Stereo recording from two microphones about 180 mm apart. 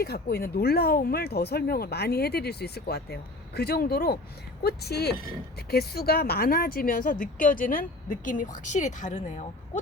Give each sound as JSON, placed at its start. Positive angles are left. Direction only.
{"t": 0.0, "sound": "speech", "side_deg": 60}